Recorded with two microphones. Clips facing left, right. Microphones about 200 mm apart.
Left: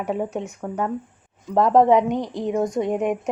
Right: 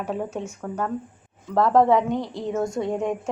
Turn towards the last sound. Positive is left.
turn(degrees=20)  # may be behind; listen again after turning